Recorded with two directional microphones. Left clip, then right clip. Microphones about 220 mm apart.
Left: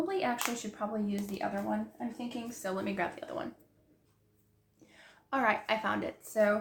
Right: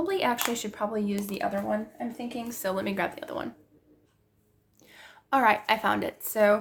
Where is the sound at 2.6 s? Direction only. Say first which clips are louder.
Right 5 dB; 45° right (ahead or behind).